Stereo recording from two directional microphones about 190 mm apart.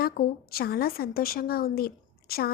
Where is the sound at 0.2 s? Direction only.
45° left (ahead or behind).